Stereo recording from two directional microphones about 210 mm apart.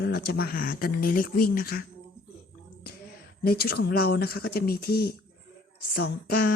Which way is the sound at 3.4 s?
50° left (ahead or behind).